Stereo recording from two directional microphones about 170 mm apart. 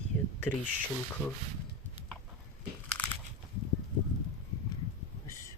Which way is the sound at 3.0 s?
10° left (ahead or behind).